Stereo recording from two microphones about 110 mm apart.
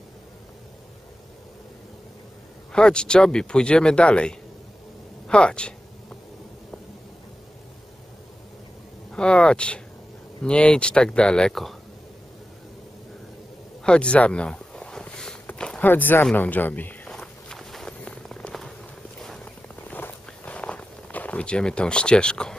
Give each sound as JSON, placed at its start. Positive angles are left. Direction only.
{"t": 2.7, "sound": "speech", "side_deg": 10}
{"t": 9.1, "sound": "speech", "side_deg": 10}
{"t": 13.8, "sound": "a sound", "side_deg": 10}
{"t": 15.9, "sound": "speech", "side_deg": 20}
{"t": 17.1, "sound": "walk", "side_deg": 5}
{"t": 19.2, "sound": "a sound", "side_deg": 5}
{"t": 19.7, "sound": "walk", "side_deg": 15}